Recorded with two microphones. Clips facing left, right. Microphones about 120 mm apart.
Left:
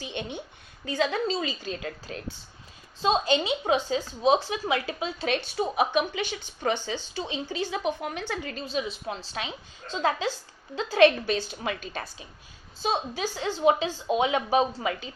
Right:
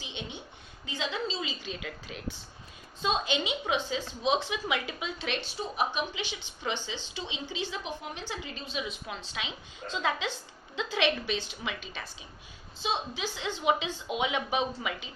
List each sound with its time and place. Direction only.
0.0 s a sound: 50° left (ahead or behind)
0.9 s a woman's voice: 50° left (ahead or behind)
5.5 s a woman's voice: 60° left (ahead or behind); by 15.1 s 40° left (ahead or behind)